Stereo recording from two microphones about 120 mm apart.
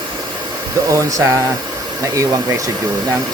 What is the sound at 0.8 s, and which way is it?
Speech, 25° right (ahead or behind).